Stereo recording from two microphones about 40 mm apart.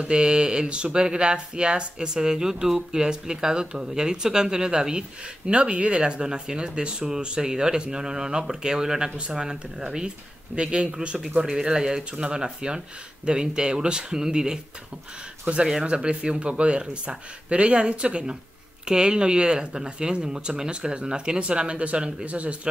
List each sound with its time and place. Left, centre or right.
0.0 s speech: right
5.5 s speech: right
15.5 s speech: right
15.8 s speech: right